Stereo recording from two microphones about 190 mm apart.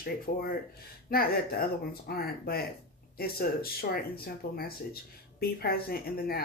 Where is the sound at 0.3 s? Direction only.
45° left (ahead or behind).